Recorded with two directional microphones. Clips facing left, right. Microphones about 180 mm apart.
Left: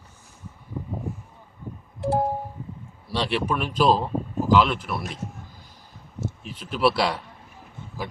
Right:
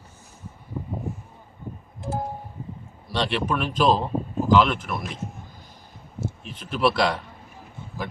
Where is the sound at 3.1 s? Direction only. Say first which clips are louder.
Even; 5° left (ahead or behind).